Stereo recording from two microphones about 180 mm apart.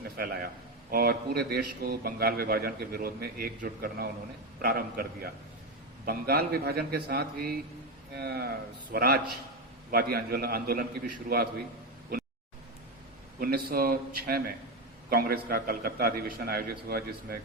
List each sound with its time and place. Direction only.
0.2 s a man's voice: 55° right (ahead or behind)
13.4 s a man's voice: 55° right (ahead or behind)